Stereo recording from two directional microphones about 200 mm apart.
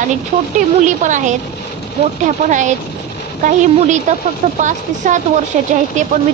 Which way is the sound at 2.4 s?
40° right (ahead or behind).